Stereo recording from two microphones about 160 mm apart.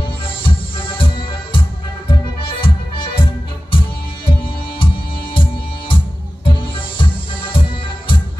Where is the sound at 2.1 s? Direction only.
30° left (ahead or behind).